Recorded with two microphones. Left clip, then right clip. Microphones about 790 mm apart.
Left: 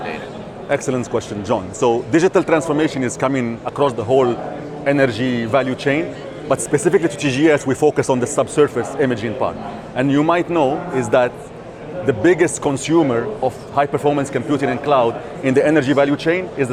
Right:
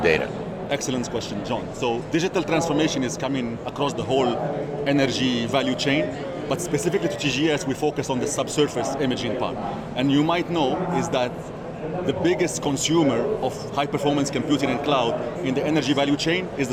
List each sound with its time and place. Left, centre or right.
1.5 s speech: left
12.3 s speech: left